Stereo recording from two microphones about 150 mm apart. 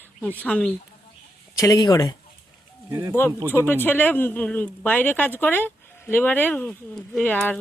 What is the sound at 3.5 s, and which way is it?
Speech, 15° left (ahead or behind).